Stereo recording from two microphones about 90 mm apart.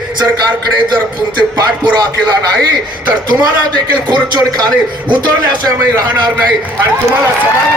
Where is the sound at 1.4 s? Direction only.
50° right (ahead or behind).